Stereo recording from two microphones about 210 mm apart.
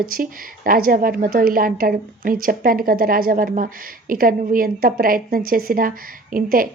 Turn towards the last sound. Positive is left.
turn(degrees=-40)  # may be behind; listen again after turning